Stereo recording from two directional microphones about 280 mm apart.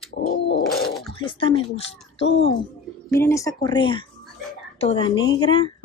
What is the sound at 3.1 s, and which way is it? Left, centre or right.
A woman's voice, centre.